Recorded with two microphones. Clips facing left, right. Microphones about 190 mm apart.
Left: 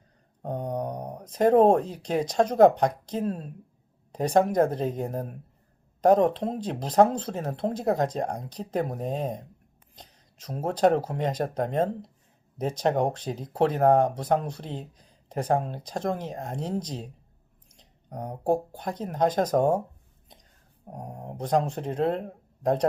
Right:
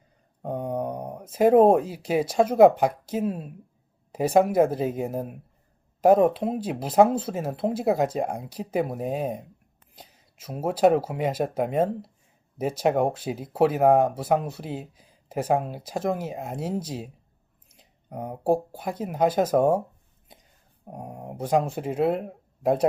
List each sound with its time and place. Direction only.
0.4 s speech: 5° right (ahead or behind)